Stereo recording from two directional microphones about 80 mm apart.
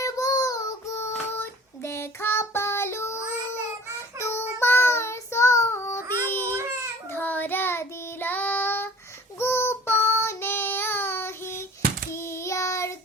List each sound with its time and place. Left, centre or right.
0.0 s child singing: left
1.4 s child singing: left
4.2 s child singing: left